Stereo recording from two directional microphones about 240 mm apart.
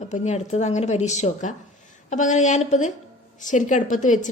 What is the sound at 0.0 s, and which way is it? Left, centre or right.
A woman's voice, left.